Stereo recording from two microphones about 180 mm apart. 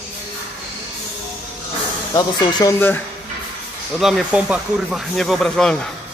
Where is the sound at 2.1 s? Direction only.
20° left (ahead or behind).